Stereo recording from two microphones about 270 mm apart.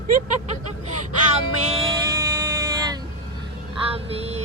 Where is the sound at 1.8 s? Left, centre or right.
Centre.